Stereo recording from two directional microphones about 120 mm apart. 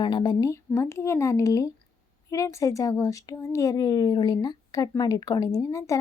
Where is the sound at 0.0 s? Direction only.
35° left (ahead or behind).